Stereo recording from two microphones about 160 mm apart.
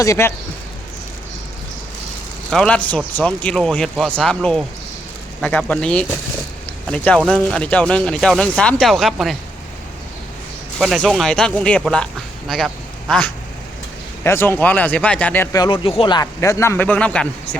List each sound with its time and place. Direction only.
0.0 s speech: 15° left (ahead or behind)
2.5 s speech: 5° left (ahead or behind)
10.8 s speech: centre (ahead or behind)
15.5 s speech: 30° left (ahead or behind); by 17.6 s 5° left (ahead or behind)